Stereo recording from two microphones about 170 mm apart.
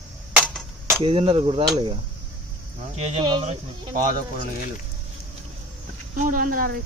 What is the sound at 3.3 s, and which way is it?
Speech, 30° right (ahead or behind).